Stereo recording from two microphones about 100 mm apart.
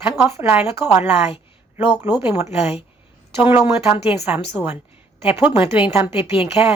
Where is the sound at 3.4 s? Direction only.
25° right (ahead or behind).